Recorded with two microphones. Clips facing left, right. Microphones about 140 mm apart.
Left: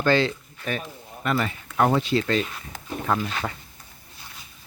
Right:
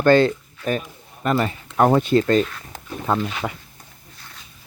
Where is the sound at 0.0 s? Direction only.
50° right (ahead or behind).